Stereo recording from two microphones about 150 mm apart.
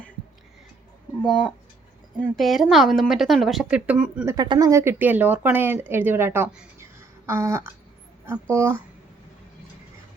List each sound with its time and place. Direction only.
1.2 s a woman's voice: 5° left (ahead or behind)
4.4 s speech: 25° right (ahead or behind)